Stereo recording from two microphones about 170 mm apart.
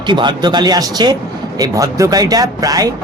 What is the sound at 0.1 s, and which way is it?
Music, 25° right (ahead or behind).